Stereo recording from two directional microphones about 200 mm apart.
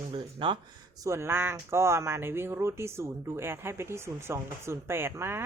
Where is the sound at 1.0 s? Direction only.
15° right (ahead or behind).